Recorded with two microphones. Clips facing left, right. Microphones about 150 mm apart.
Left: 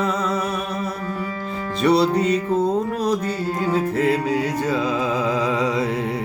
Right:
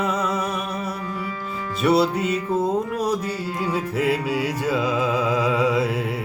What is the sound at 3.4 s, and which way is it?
Music, 50° left (ahead or behind).